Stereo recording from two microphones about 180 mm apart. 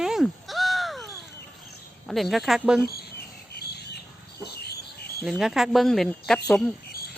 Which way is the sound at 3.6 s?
65° left (ahead or behind).